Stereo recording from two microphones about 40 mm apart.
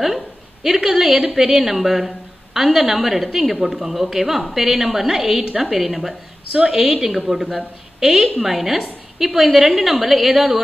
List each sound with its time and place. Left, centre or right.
0.8 s a woman's voice: centre
6.6 s a woman's voice: centre